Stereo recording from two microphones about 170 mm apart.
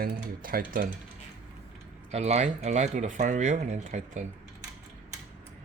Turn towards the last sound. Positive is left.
turn(degrees=-45)  # may be behind; listen again after turning